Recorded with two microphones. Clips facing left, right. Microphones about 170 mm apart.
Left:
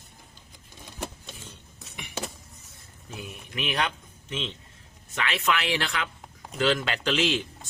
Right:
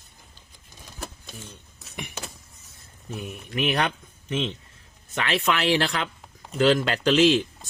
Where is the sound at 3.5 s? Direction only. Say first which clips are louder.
Right 5 dB; 40° right (ahead or behind).